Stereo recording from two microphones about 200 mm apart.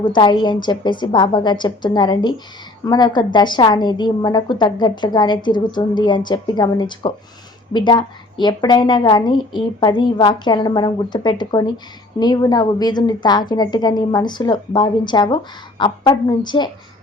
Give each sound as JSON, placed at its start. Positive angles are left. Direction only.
{"t": 0.0, "sound": "a woman's voice", "side_deg": 20}